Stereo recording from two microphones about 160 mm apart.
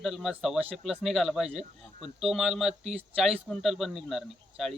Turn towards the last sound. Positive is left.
turn(degrees=0)  # may be behind; listen again after turning